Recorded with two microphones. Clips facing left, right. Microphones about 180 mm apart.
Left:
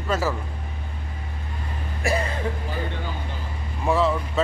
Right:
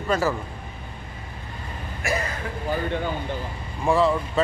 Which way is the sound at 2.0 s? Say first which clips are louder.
Left 3 dB; 35° left (ahead or behind).